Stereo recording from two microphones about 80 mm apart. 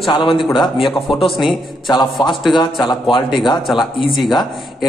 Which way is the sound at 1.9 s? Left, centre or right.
Left.